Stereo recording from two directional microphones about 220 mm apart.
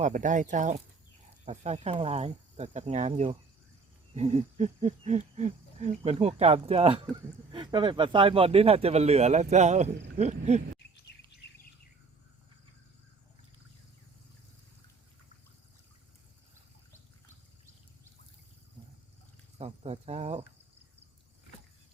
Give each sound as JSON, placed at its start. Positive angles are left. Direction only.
{"t": 0.0, "sound": "hoot", "side_deg": -35}
{"t": 1.5, "sound": "speech", "side_deg": -30}
{"t": 10.2, "sound": "hoot", "side_deg": -30}
{"t": 19.5, "sound": "speech", "side_deg": -30}